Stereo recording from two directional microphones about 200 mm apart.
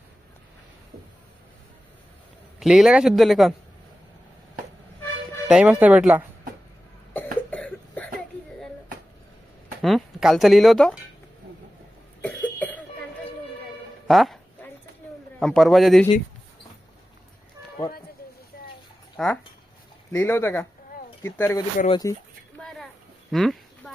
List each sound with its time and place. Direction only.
2.6 s a man's voice: 5° right (ahead or behind)
5.5 s speech: 5° right (ahead or behind)
7.5 s cough: 5° left (ahead or behind)
9.8 s speech: centre (ahead or behind)
12.2 s cough: 5° left (ahead or behind)
14.1 s music: centre (ahead or behind)
15.4 s a man's voice: centre (ahead or behind)
19.1 s speech: centre (ahead or behind); by 22.1 s 20° left (ahead or behind)
22.5 s a sound: centre (ahead or behind)